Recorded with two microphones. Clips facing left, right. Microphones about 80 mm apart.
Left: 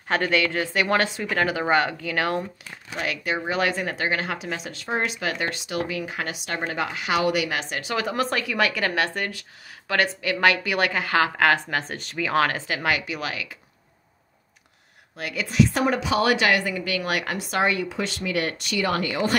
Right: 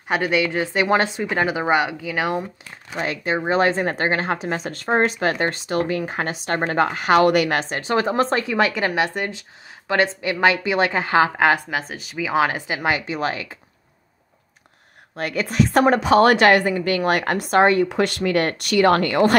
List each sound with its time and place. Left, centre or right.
0.1 s speech: centre
3.0 s speech: right
11.7 s speech: centre; by 13.6 s right
15.1 s a woman's voice: right
17.8 s a woman's voice: right